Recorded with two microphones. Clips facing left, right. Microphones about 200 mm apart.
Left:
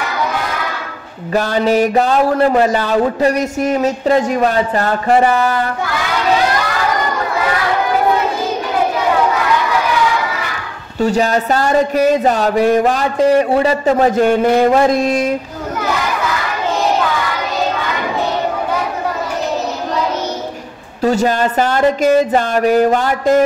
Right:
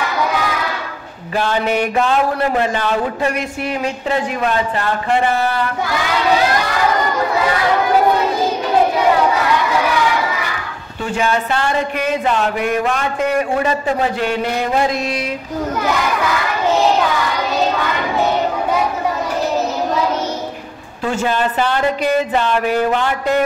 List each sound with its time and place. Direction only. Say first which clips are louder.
1.3 s speech: left 4 dB; 40° left (ahead or behind)
11.0 s speech: left 5 dB; 40° left (ahead or behind)
21.0 s speech: left 4 dB; 40° left (ahead or behind)